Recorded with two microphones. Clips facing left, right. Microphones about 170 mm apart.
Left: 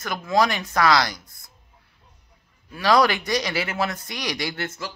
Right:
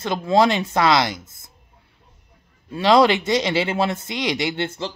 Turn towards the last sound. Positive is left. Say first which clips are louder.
# right 5 dB
turn(degrees=-30)  # may be behind; listen again after turning